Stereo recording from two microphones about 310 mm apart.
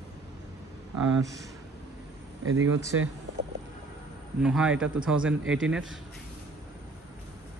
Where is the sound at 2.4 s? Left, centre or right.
Right.